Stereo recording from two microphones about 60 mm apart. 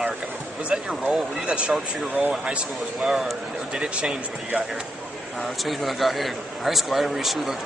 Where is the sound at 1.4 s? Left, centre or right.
Right.